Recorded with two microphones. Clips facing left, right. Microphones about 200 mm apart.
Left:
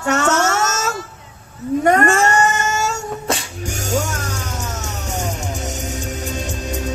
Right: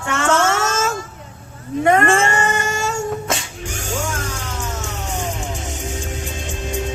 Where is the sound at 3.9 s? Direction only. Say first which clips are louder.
Left 3 dB; 40° left (ahead or behind).